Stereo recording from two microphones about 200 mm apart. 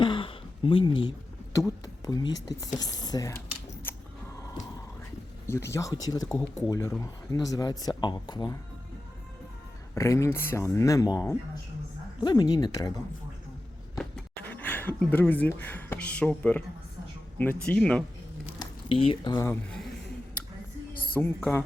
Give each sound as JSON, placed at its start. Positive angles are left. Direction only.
{"t": 0.0, "sound": "a sound", "side_deg": 25}
{"t": 1.5, "sound": "speech", "side_deg": 20}
{"t": 3.9, "sound": "a sound", "side_deg": 10}
{"t": 5.5, "sound": "speech", "side_deg": 15}
{"t": 9.9, "sound": "speech", "side_deg": 15}
{"t": 14.0, "sound": "speech", "side_deg": 10}
{"t": 18.6, "sound": "speech", "side_deg": 25}
{"t": 20.9, "sound": "a sound", "side_deg": 45}
{"t": 21.2, "sound": "speech", "side_deg": 10}